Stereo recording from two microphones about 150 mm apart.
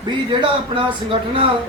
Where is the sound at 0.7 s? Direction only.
35° right (ahead or behind).